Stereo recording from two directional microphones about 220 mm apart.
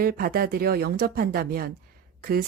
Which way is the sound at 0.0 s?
40° right (ahead or behind).